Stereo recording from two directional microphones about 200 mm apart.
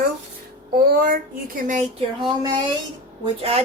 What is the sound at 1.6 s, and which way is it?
Speech, 40° right (ahead or behind).